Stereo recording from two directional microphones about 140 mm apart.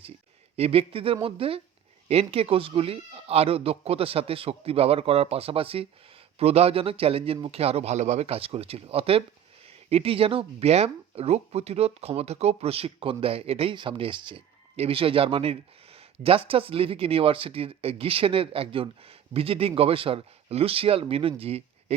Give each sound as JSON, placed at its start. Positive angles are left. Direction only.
{"t": 0.5, "sound": "speech", "side_deg": -45}